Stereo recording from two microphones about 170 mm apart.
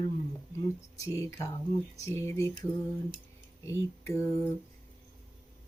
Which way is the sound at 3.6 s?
15° left (ahead or behind).